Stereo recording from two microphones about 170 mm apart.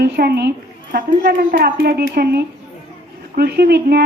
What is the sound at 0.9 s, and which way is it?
A woman's voice, 60° right (ahead or behind).